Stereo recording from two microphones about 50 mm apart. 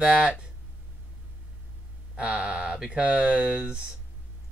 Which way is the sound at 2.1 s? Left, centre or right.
Right.